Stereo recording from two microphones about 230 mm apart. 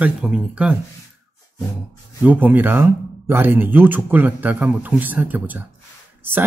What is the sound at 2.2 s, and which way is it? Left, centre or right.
Speech, centre.